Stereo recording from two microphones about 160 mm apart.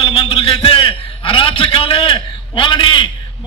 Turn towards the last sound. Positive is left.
turn(degrees=30)  # may be behind; listen again after turning